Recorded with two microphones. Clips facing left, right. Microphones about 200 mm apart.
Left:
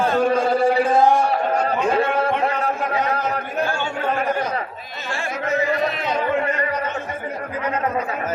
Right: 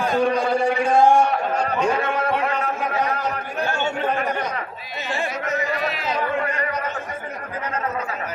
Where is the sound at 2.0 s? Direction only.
30° left (ahead or behind).